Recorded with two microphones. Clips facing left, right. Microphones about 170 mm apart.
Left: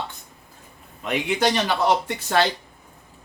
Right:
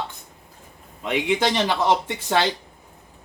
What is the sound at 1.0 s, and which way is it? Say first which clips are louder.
Speech: right 1 dB; 20° right (ahead or behind).